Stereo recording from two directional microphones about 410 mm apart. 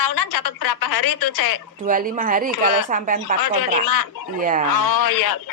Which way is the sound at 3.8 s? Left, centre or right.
Left.